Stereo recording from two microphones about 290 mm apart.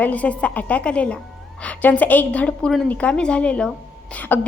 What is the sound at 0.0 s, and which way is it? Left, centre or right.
A woman's voice, centre.